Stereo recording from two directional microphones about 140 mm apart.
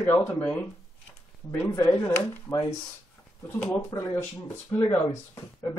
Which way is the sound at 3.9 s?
30° left (ahead or behind).